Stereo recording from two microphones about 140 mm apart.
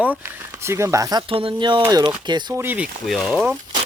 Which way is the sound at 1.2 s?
40° right (ahead or behind).